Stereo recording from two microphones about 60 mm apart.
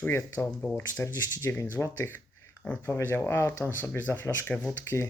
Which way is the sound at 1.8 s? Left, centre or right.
Left.